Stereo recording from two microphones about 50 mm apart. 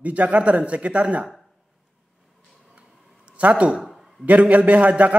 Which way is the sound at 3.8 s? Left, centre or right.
Centre.